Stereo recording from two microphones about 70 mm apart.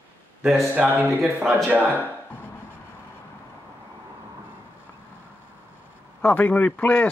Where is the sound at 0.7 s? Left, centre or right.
Right.